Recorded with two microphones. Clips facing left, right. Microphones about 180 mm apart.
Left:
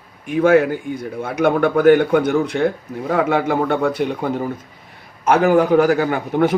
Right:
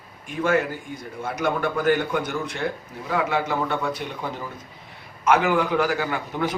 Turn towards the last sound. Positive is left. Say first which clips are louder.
# left 9 dB
turn(degrees=50)  # may be behind; listen again after turning